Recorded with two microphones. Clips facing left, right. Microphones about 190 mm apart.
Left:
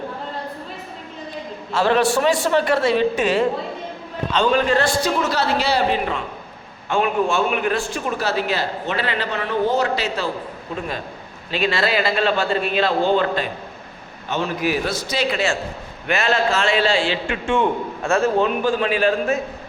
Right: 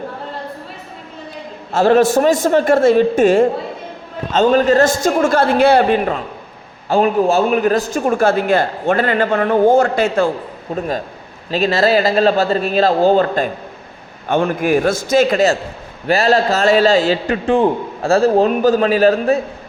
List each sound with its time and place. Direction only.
1.7 s a man's voice: 45° right (ahead or behind)
6.8 s a man's voice: 35° right (ahead or behind)